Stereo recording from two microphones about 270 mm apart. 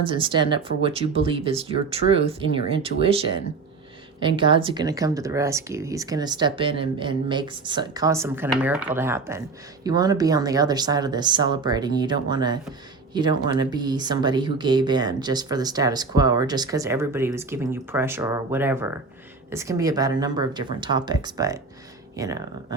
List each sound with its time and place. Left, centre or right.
0.0 s speech: centre